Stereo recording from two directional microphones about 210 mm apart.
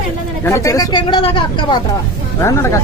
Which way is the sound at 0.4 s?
15° left (ahead or behind).